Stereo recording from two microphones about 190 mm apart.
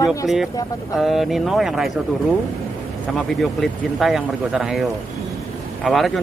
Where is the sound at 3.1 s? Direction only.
Centre (ahead or behind).